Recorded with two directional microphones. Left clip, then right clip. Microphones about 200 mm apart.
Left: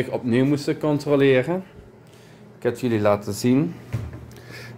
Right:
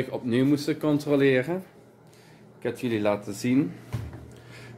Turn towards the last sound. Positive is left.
turn(degrees=30)  # may be behind; listen again after turning